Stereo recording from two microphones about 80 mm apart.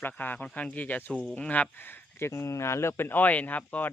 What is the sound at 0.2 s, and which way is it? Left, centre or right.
Speech, centre.